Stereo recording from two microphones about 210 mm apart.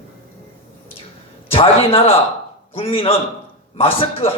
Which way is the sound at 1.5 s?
25° left (ahead or behind).